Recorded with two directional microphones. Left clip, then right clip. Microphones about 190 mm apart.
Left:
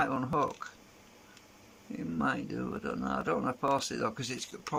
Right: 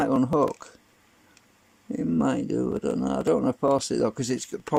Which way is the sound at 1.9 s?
35° right (ahead or behind).